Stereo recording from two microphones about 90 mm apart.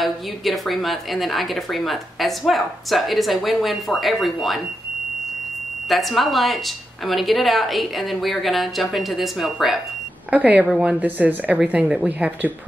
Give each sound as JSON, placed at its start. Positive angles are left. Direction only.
{"t": 0.0, "sound": "a woman's voice", "side_deg": 0}
{"t": 5.9, "sound": "a woman's voice", "side_deg": 0}
{"t": 10.3, "sound": "speech", "side_deg": -15}